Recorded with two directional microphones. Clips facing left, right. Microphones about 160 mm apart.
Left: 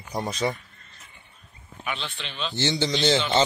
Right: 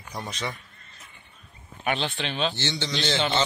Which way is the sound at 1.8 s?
80° right.